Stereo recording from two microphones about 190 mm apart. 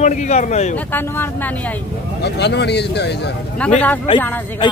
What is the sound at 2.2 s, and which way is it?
Speech, 60° left (ahead or behind).